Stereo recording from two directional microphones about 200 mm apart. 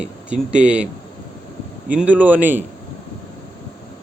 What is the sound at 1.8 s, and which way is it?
Speech, 10° right (ahead or behind).